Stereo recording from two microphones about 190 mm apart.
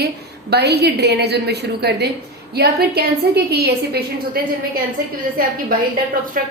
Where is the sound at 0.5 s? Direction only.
60° right (ahead or behind).